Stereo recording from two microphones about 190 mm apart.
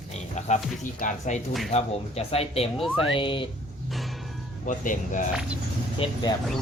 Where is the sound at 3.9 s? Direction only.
Centre (ahead or behind).